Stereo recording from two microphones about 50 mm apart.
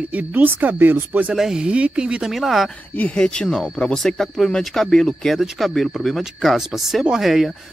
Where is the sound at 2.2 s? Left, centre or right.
Centre.